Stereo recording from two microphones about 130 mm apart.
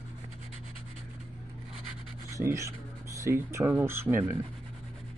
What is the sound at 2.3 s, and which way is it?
Speech, 20° right (ahead or behind).